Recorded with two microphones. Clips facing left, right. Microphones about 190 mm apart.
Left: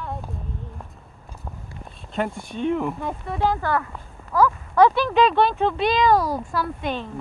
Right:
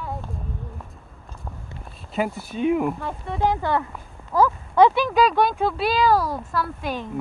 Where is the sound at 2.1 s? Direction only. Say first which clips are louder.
Right 1 dB; 5° right (ahead or behind).